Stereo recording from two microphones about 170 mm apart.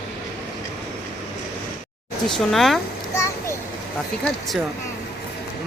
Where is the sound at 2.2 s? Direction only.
Centre (ahead or behind).